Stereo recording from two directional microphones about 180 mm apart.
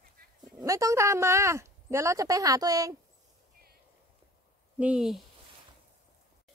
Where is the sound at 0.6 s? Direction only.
20° right (ahead or behind).